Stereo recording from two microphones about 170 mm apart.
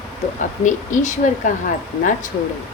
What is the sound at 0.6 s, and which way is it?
Speech, 50° left (ahead or behind).